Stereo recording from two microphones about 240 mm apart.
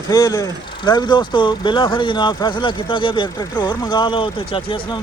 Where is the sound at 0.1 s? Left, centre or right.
Centre.